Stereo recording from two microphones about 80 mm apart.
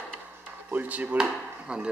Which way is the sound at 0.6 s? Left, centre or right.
Centre.